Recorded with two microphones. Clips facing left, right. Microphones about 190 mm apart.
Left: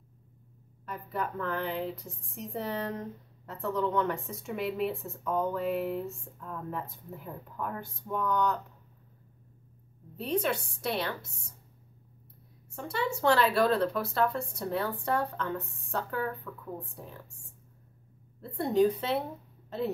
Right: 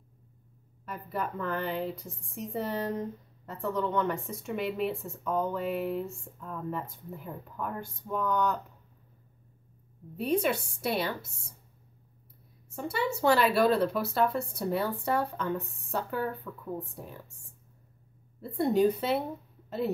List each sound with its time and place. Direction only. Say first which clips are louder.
0.8 s speech: even; 5° right (ahead or behind)
10.1 s speech: right 2 dB; 10° right (ahead or behind)
12.7 s speech: right 1 dB; 5° right (ahead or behind)
18.4 s speech: right 1 dB; 5° right (ahead or behind)